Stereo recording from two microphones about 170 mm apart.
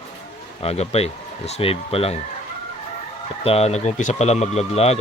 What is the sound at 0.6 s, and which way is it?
Speech, 35° left (ahead or behind).